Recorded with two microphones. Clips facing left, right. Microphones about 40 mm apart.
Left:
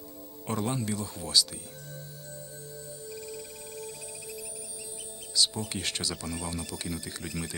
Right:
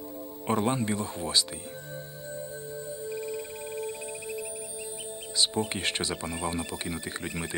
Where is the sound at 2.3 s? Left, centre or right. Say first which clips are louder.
Right 8 dB; right.